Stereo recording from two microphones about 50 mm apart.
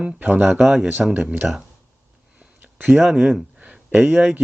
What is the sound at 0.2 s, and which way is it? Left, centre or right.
Speech, right.